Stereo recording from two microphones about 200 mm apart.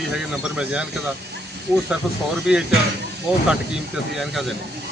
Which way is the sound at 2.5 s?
5° right (ahead or behind).